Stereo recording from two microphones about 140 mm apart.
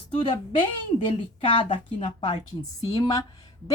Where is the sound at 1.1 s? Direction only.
40° left (ahead or behind).